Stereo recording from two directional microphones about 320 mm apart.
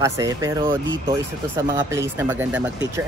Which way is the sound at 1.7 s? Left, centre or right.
Centre.